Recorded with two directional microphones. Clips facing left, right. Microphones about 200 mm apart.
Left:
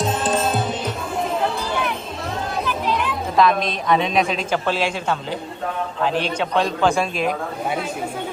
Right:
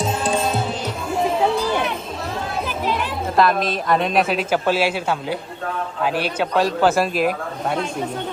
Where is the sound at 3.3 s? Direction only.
Centre (ahead or behind).